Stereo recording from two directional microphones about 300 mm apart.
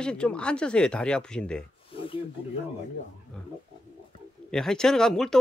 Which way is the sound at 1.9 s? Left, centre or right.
Centre.